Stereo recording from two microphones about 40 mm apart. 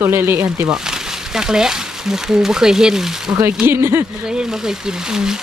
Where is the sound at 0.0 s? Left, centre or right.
Right.